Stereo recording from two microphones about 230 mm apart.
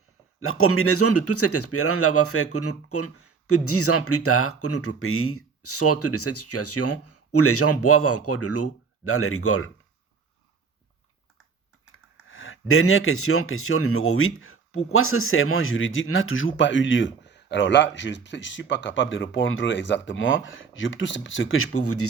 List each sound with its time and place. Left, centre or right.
0.3 s speech: left
11.9 s speech: left